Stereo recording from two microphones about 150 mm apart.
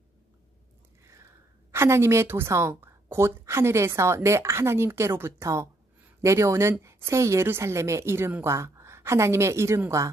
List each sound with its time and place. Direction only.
1.7 s a woman's voice: 15° right (ahead or behind)